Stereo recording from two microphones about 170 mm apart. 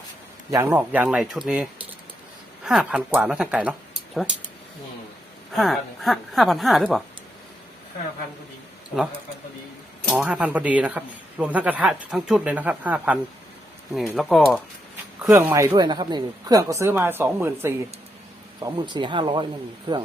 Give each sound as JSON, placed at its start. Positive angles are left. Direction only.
{"t": 0.5, "sound": "speech", "side_deg": -15}
{"t": 5.5, "sound": "a woman's voice", "side_deg": 0}
{"t": 10.1, "sound": "speech", "side_deg": -5}
{"t": 14.2, "sound": "a woman's voice", "side_deg": 0}
{"t": 15.3, "sound": "speech", "side_deg": -15}
{"t": 18.6, "sound": "speech", "side_deg": -25}